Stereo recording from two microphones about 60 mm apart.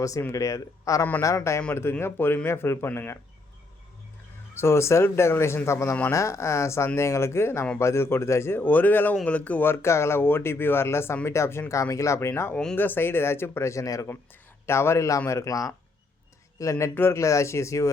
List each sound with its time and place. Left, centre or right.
0.3 s speech: left
1.7 s speech: left
4.5 s speech: left
6.1 s speech: left
8.6 s speech: left
9.6 s speech: left
11.7 s speech: left
12.3 s speech: left
14.7 s speech: left
16.6 s speech: left
16.9 s speech: left
17.2 s speech: left